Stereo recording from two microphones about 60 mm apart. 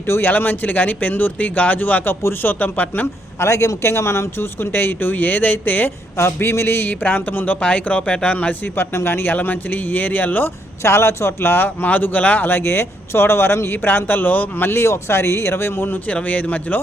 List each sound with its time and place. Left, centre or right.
0.1 s a man's voice: left
3.4 s speech: left
4.6 s a man's voice: left
6.1 s a man's voice: left
8.6 s a man's voice: left
9.3 s a man's voice: left
10.8 s a man's voice: left
16.0 s a man's voice: left